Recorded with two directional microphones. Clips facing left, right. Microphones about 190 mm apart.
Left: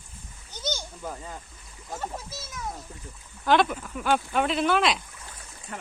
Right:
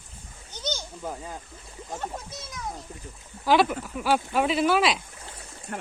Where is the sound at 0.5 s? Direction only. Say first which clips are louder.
Even; 10° left (ahead or behind).